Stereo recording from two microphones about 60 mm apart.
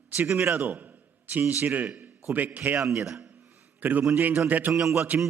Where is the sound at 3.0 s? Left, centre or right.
Centre.